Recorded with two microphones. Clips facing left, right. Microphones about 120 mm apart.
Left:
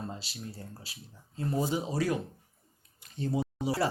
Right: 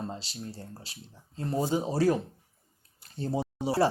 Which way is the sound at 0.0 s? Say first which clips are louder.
Right 3 dB; 30° right (ahead or behind).